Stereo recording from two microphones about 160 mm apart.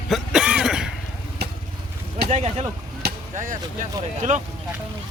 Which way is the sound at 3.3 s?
55° right (ahead or behind).